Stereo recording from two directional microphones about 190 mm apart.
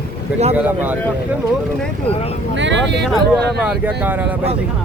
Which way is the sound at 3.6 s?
5° right (ahead or behind).